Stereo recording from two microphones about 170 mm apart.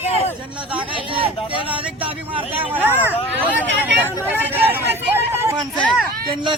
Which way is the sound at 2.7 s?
10° right (ahead or behind).